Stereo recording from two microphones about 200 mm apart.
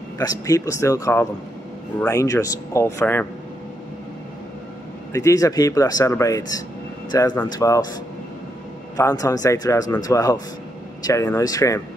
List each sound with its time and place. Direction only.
0.2 s speech: 15° left (ahead or behind)
5.1 s speech: 15° left (ahead or behind)
8.9 s speech: 20° left (ahead or behind)